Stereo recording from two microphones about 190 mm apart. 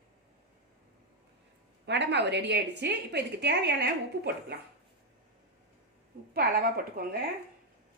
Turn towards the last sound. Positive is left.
turn(degrees=-55)  # may be behind; listen again after turning